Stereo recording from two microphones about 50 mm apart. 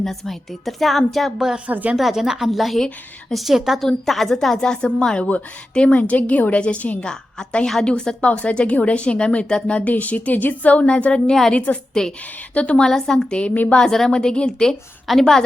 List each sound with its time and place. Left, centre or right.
0.0 s a woman's voice: centre
1.7 s a woman's voice: right
2.0 s a woman's voice: centre; by 10.9 s left
10.9 s a woman's voice: centre
11.5 s speech: left
12.8 s a woman's voice: centre
13.3 s speech: left
13.7 s a woman's voice: centre